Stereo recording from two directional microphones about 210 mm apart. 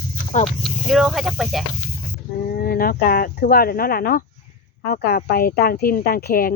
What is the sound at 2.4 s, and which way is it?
A woman's voice, 45° left (ahead or behind).